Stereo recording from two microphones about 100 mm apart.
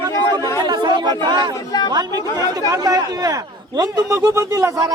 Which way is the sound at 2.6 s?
35° right (ahead or behind).